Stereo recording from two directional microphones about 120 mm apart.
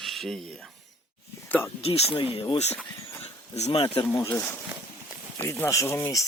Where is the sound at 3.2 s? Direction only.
60° left (ahead or behind).